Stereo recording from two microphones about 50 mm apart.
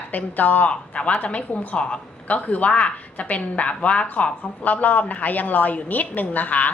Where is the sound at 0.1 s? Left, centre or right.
Left.